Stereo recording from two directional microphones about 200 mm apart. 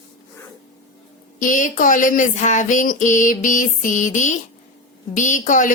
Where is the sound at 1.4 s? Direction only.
40° left (ahead or behind).